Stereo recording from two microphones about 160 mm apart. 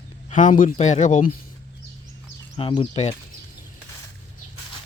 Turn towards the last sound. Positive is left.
turn(degrees=45)  # may be behind; listen again after turning